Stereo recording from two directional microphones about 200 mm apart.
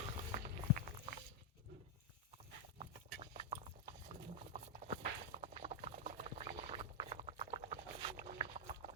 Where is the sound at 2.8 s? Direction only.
30° right (ahead or behind).